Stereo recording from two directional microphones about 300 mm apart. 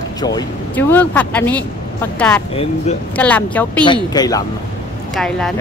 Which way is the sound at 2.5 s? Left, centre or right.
Centre.